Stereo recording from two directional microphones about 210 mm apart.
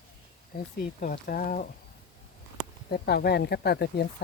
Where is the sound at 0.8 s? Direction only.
40° left (ahead or behind).